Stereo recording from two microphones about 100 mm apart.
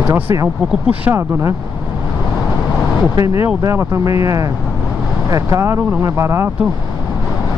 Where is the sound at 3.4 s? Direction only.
25° right (ahead or behind).